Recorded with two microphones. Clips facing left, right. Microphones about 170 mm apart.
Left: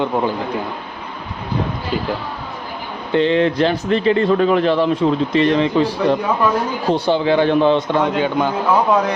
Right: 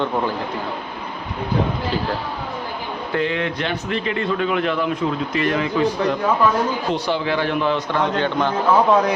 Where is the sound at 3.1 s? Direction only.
30° left (ahead or behind).